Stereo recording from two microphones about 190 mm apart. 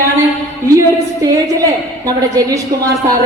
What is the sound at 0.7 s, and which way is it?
A woman's voice, 15° right (ahead or behind).